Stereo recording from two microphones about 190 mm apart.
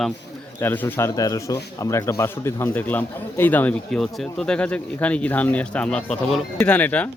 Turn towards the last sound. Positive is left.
turn(degrees=5)  # may be behind; listen again after turning